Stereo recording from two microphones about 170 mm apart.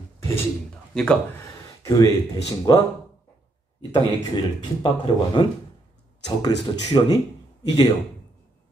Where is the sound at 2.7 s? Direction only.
25° left (ahead or behind).